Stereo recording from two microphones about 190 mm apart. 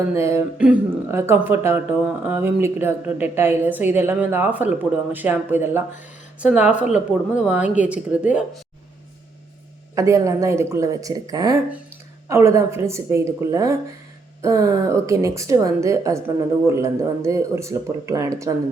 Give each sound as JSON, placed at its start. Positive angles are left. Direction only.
{"t": 0.1, "sound": "speech", "side_deg": -15}
{"t": 9.9, "sound": "speech", "side_deg": -15}